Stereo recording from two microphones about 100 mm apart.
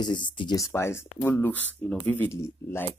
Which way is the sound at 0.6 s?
30° left (ahead or behind).